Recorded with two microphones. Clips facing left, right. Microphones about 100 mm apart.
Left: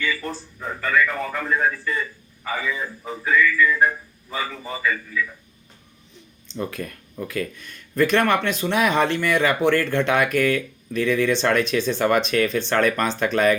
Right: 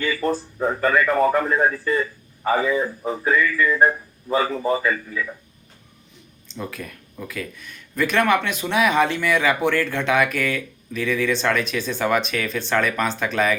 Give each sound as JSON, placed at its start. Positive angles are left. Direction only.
{"t": 0.0, "sound": "speech", "side_deg": -40}
{"t": 6.5, "sound": "speech", "side_deg": -5}